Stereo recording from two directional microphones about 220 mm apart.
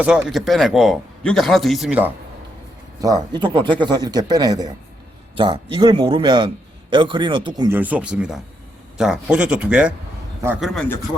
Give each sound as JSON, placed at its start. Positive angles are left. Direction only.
{"t": 0.0, "sound": "a man's voice", "side_deg": -5}
{"t": 3.0, "sound": "a man's voice", "side_deg": -20}